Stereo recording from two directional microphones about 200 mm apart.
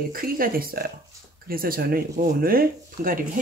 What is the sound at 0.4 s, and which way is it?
Speech, 50° right (ahead or behind).